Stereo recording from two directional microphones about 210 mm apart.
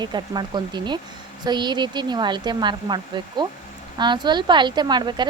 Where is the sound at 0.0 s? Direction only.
20° right (ahead or behind).